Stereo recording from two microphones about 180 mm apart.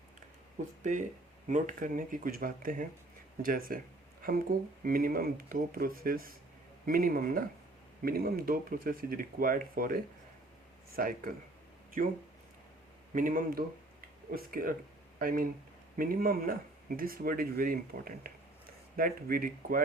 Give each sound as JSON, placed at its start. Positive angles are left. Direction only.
{"t": 0.8, "sound": "speech", "side_deg": -45}
{"t": 13.1, "sound": "speech", "side_deg": -50}